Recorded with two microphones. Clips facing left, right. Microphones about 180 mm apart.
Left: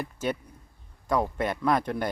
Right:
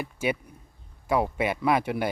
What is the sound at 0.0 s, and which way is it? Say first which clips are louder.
Speech: right 2 dB; 10° right (ahead or behind).